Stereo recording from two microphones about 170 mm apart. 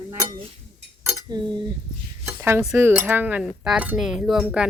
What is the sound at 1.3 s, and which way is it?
Cutlery, 25° right (ahead or behind).